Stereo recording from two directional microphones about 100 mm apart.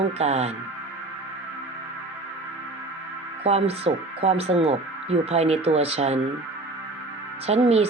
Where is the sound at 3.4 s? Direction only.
90° right.